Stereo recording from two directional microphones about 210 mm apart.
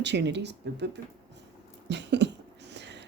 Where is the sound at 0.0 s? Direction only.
55° right (ahead or behind).